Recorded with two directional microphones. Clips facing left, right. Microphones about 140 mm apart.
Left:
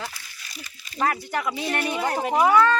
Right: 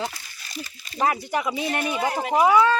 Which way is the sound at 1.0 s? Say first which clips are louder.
Right 2 dB; 15° right (ahead or behind).